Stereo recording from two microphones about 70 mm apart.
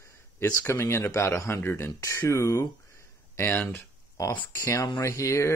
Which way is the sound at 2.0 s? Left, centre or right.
Left.